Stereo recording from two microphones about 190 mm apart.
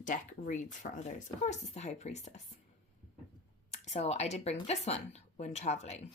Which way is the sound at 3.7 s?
35° left (ahead or behind).